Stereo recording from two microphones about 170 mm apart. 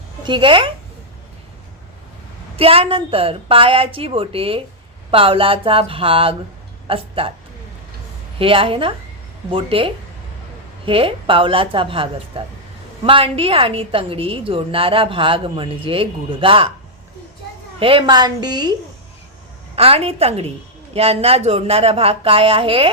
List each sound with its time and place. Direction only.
0.3 s a woman's voice: 30° right (ahead or behind)
2.6 s a woman's voice: 35° right (ahead or behind)
8.4 s a woman's voice: 30° right (ahead or behind)
17.7 s a woman's voice: 30° right (ahead or behind)
19.7 s a woman's voice: 35° right (ahead or behind)